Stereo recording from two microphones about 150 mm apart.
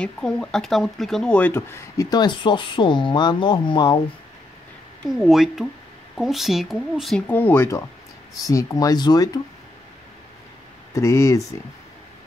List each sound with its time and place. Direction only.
0.0 s speech: 5° left (ahead or behind)
2.0 s speech: 25° left (ahead or behind)
5.1 s speech: centre (ahead or behind)
7.2 s speech: 15° left (ahead or behind)
10.9 s speech: 20° left (ahead or behind)